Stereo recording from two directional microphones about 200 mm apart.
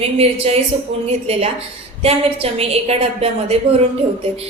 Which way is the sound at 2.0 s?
30° right (ahead or behind).